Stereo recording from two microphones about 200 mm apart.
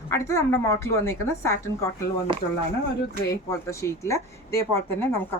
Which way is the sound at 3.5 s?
15° left (ahead or behind).